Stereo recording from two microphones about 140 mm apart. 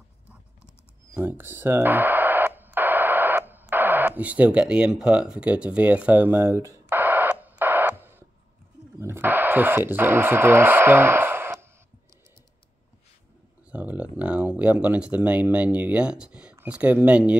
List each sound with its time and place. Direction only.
1.1 s radio: 15° right (ahead or behind)
9.0 s speech: 15° right (ahead or behind)
13.7 s speech: 10° right (ahead or behind)